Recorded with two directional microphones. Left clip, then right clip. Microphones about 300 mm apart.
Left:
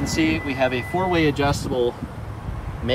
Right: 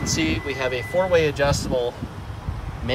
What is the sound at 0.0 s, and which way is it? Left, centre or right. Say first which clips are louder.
Speech: left 2 dB; centre.